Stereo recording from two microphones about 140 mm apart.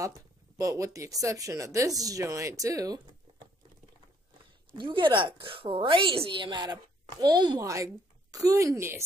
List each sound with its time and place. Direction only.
0.6 s speech: 25° right (ahead or behind)
4.7 s a woman's voice: 35° right (ahead or behind); by 9.0 s 20° right (ahead or behind)